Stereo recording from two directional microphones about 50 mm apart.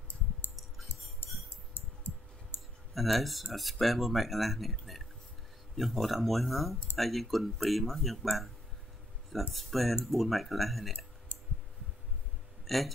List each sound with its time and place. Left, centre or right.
1.7 s a sound: left
2.9 s speech: centre
9.5 s speech: centre
12.6 s speech: centre